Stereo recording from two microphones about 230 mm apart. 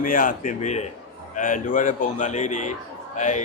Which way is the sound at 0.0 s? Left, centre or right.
Left.